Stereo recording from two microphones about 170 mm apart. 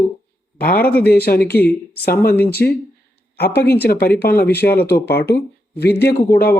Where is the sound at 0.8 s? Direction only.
10° left (ahead or behind).